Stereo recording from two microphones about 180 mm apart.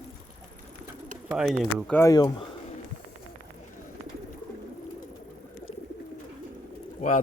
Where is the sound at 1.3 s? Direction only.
Centre (ahead or behind).